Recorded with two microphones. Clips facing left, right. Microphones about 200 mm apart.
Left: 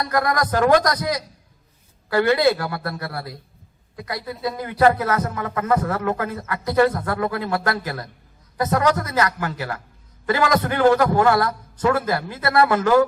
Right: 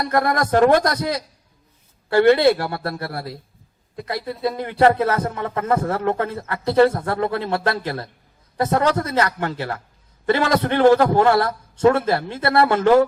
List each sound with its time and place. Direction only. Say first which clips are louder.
0.0 s a man's voice: right 2 dB; 25° right (ahead or behind)